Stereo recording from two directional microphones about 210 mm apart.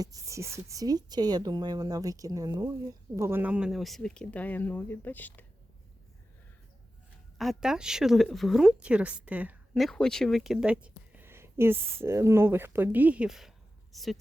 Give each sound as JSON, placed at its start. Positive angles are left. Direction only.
{"t": 0.0, "sound": "speech", "side_deg": -15}
{"t": 7.3, "sound": "speech", "side_deg": 0}